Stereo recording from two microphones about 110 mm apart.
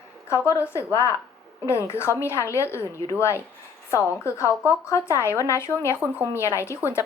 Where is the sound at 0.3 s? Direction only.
25° left (ahead or behind).